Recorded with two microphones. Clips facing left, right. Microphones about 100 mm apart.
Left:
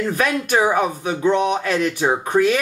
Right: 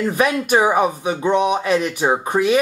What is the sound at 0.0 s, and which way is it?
Speech, 10° right (ahead or behind).